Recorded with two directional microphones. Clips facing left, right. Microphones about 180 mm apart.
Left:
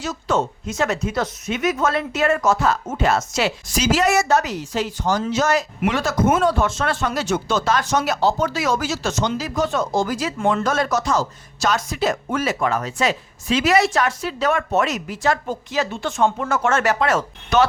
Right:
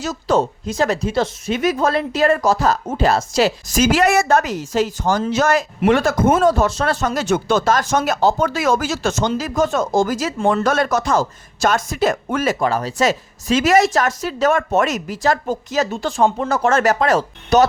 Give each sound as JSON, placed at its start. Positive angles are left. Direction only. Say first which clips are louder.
{"t": 0.0, "sound": "speech", "louder": "right 4 dB", "side_deg": -40}
{"t": 6.4, "sound": "speech", "louder": "right 4 dB", "side_deg": -40}
{"t": 10.6, "sound": "speech", "louder": "right 3 dB", "side_deg": -65}
{"t": 12.5, "sound": "speech", "louder": "right 3 dB", "side_deg": -35}